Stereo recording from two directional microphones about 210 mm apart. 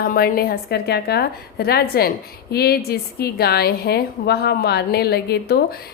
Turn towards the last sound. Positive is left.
turn(degrees=50)  # may be behind; listen again after turning